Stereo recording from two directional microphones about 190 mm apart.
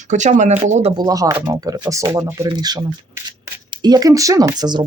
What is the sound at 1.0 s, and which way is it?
Speech, 20° right (ahead or behind).